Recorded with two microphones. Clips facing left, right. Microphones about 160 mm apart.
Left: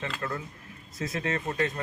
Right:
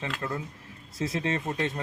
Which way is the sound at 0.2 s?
20° right (ahead or behind).